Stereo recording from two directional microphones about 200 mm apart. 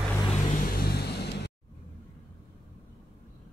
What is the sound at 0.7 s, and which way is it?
Vehicle, 50° left (ahead or behind).